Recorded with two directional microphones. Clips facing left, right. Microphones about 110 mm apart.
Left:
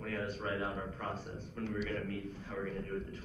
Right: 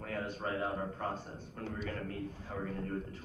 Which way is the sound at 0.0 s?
30° right (ahead or behind).